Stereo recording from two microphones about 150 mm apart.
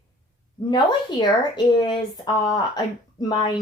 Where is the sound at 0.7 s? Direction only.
30° left (ahead or behind).